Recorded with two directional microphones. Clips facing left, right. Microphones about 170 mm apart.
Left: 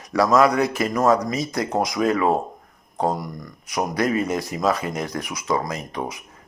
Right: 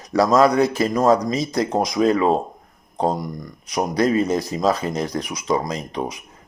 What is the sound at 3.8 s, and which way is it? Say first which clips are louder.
Speech: right 3 dB; 25° right (ahead or behind).